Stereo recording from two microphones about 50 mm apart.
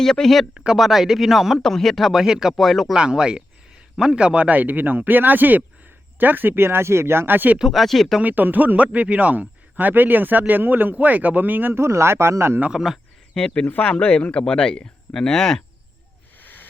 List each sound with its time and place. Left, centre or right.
0.0 s speech: centre
0.5 s speech: centre
0.8 s speech: centre
1.6 s speech: centre
2.9 s speech: centre; by 7.6 s right
7.6 s speech: centre
8.2 s speech: right
11.7 s speech: right
12.7 s speech: centre
13.4 s speech: centre
16.4 s a sound: left